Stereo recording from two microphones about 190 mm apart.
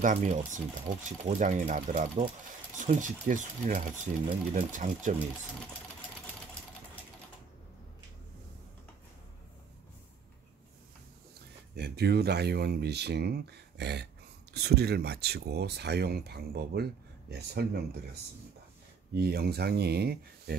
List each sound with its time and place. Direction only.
0.0 s speech: 40° right (ahead or behind)
11.7 s speech: 60° right (ahead or behind)